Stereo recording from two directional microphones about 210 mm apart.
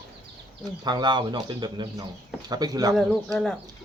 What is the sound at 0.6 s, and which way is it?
Speech, 20° right (ahead or behind).